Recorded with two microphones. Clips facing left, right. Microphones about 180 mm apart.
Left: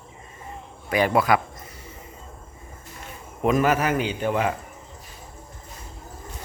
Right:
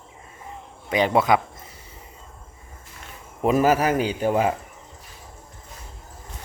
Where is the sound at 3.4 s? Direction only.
35° right (ahead or behind).